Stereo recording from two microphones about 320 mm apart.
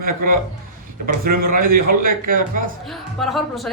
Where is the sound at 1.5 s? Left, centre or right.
Right.